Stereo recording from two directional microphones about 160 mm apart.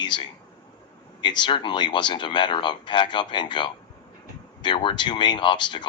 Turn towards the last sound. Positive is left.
turn(degrees=30)  # may be behind; listen again after turning